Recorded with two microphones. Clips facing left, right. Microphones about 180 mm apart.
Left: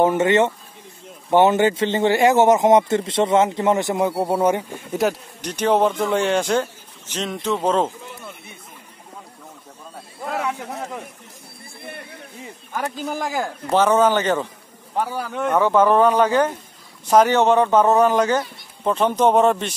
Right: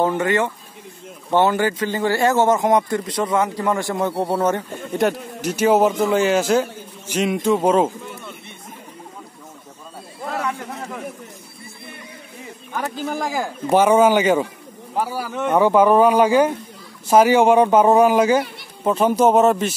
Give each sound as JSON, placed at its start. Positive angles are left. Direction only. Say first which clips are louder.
{"t": 0.0, "sound": "speech", "louder": "left 3 dB", "side_deg": 20}
{"t": 4.1, "sound": "speech", "louder": "left 1 dB", "side_deg": 10}
{"t": 4.9, "sound": "speech", "louder": "right 1 dB", "side_deg": -5}
{"t": 10.2, "sound": "a sound", "louder": "even", "side_deg": 0}
{"t": 11.9, "sound": "a sound", "louder": "left 5 dB", "side_deg": 60}
{"t": 12.9, "sound": "speech", "louder": "right 2 dB", "side_deg": 0}
{"t": 13.7, "sound": "speech", "louder": "right 3 dB", "side_deg": -10}